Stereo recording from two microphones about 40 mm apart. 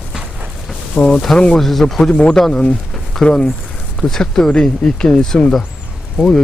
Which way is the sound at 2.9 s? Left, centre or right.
Centre.